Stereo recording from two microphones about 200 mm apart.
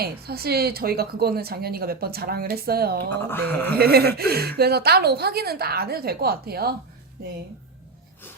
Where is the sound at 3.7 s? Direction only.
50° right (ahead or behind).